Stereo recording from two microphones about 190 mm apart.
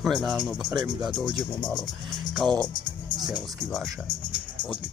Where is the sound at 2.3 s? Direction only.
5° left (ahead or behind).